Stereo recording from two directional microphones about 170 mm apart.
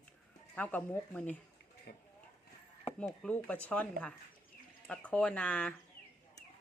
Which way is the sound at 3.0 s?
5° left (ahead or behind).